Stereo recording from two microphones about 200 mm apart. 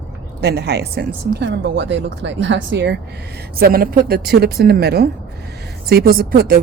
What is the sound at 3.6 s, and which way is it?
A woman's voice, 50° right (ahead or behind).